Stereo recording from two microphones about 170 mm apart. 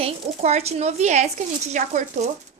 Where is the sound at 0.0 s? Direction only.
40° right (ahead or behind).